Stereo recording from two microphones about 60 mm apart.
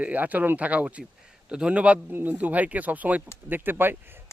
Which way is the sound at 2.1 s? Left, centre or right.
Right.